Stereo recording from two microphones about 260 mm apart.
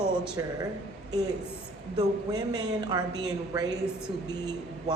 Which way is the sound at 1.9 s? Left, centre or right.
Centre.